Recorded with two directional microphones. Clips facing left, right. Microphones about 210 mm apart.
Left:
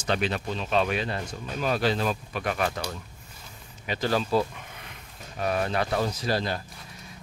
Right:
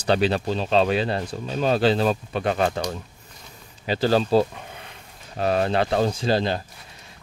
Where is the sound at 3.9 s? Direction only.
30° right (ahead or behind).